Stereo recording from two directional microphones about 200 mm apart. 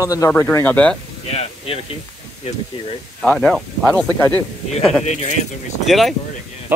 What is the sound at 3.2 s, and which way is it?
Speech, 5° left (ahead or behind).